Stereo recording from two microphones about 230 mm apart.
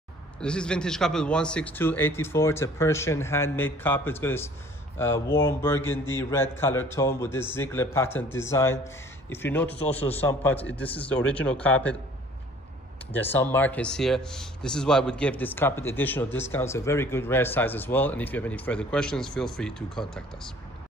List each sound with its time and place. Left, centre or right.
0.4 s speech: centre
9.8 s a man's voice: left
10.4 s speech: centre
13.1 s speech: centre